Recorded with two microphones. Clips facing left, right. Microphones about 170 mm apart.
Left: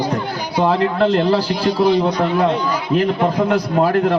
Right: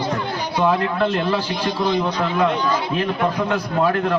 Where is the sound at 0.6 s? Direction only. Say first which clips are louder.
Left 3 dB; 35° left (ahead or behind).